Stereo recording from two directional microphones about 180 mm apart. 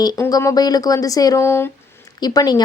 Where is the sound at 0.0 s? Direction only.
20° left (ahead or behind).